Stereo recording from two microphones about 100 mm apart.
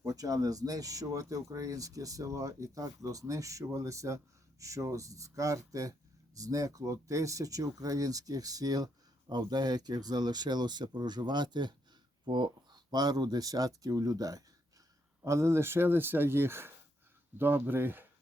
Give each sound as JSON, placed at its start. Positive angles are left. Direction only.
{"t": 0.0, "sound": "speech", "side_deg": -35}